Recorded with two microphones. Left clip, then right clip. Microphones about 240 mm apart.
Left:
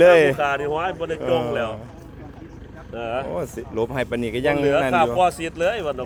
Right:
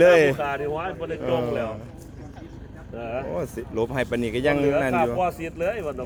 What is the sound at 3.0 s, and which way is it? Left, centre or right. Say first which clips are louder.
Speech: left 4 dB; left.